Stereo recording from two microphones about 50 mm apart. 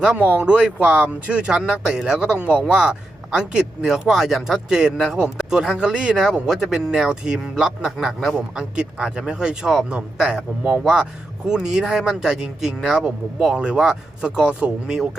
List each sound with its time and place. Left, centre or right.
0.2 s speech: right; by 15.2 s centre